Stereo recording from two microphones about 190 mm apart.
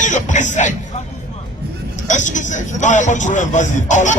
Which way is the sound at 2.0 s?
40° left (ahead or behind).